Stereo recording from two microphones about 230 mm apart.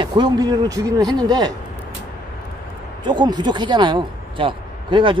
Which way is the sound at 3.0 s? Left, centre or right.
Centre.